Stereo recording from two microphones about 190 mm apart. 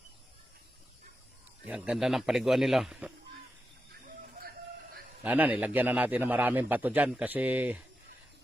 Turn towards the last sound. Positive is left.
turn(degrees=-10)  # may be behind; listen again after turning